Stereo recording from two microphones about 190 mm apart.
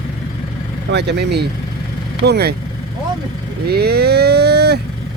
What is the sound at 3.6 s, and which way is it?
Speech, 55° right (ahead or behind).